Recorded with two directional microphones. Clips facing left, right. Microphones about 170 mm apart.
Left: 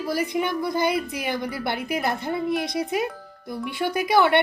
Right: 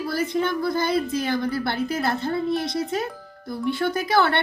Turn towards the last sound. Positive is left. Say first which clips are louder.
# left 2 dB
turn(degrees=15)  # may be behind; listen again after turning